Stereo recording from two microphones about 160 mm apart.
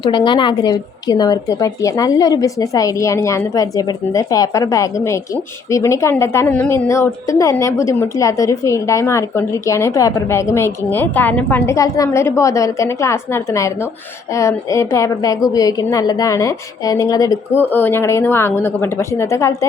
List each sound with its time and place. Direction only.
0.0 s a woman's voice: 30° left (ahead or behind)